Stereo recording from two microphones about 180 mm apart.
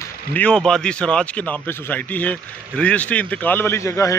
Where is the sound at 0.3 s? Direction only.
5° left (ahead or behind).